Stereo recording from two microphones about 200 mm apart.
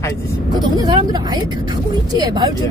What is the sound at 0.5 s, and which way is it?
Speech, 20° right (ahead or behind).